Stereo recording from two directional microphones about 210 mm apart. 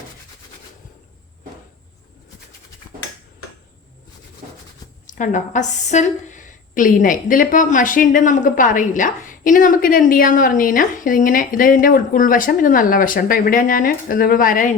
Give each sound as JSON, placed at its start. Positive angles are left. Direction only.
{"t": 5.0, "sound": "a woman's voice", "side_deg": 35}